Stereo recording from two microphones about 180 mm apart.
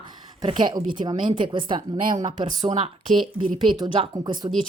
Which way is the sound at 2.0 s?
45° right (ahead or behind).